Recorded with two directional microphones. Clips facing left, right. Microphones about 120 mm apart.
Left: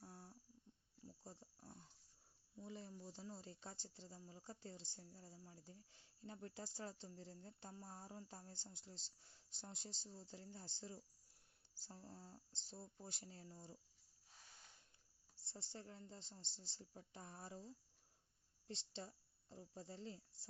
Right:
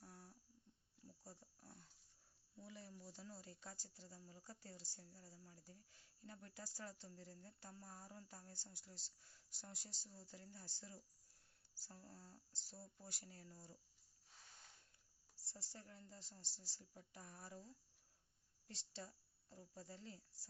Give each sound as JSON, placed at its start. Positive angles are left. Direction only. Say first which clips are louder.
{"t": 0.0, "sound": "a sound", "louder": "left 3 dB", "side_deg": 25}
{"t": 1.2, "sound": "wild animals", "louder": "left 3 dB", "side_deg": 25}
{"t": 2.6, "sound": "speech", "louder": "left 4 dB", "side_deg": 25}
{"t": 15.4, "sound": "a woman's voice", "louder": "left 4 dB", "side_deg": 25}